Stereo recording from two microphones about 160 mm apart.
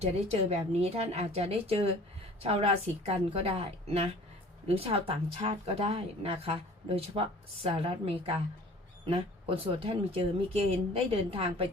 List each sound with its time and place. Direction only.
0.0 s a woman's voice: 40° right (ahead or behind)